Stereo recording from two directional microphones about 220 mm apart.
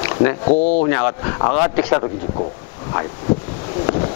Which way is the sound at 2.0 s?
30° left (ahead or behind).